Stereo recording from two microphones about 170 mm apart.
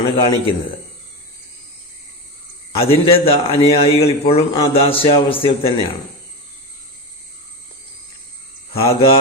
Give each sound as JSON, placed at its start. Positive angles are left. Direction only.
{"t": 0.2, "sound": "a man's voice", "side_deg": 30}
{"t": 2.8, "sound": "a man's voice", "side_deg": 35}
{"t": 8.8, "sound": "a man's voice", "side_deg": 35}